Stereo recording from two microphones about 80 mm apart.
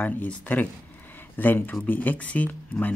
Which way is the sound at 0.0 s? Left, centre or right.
Left.